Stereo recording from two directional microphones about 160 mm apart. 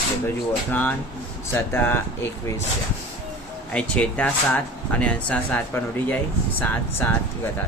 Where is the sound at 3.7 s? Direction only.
5° left (ahead or behind).